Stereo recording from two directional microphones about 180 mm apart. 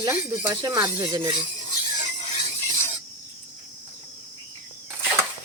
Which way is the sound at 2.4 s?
40° left (ahead or behind).